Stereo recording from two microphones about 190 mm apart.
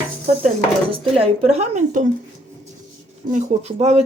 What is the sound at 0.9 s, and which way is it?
Speech, 30° right (ahead or behind).